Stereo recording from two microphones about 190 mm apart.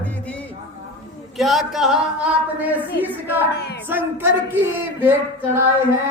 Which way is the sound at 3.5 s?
60° left (ahead or behind).